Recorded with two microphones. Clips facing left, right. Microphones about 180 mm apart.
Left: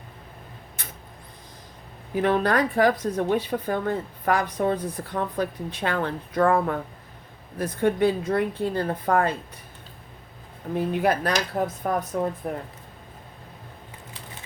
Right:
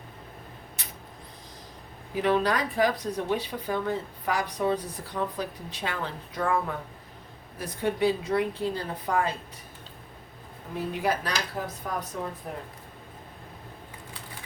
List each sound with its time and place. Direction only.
0.8 s a sound: 50° left (ahead or behind)
2.2 s speech: 55° left (ahead or behind)
11.0 s speech: 55° left (ahead or behind)